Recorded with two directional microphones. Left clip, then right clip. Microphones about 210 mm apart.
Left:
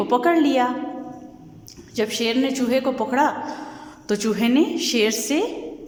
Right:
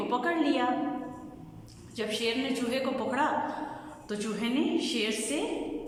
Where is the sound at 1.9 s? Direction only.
35° left (ahead or behind).